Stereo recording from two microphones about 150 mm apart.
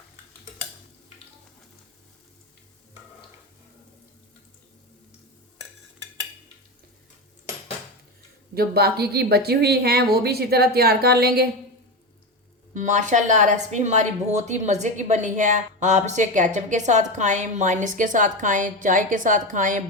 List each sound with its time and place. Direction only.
8.5 s speech: 90° right
12.7 s a woman's voice: 55° right (ahead or behind)